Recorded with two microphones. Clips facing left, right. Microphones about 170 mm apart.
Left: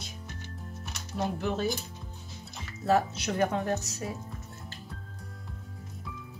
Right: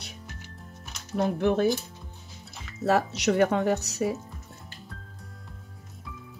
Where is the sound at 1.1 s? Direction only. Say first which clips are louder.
Right 7 dB; 55° right (ahead or behind).